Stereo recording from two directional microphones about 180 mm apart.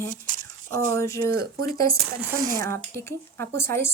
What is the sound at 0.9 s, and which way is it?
Speech, 15° left (ahead or behind).